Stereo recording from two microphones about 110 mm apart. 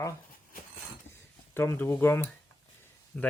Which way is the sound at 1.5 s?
25° left (ahead or behind).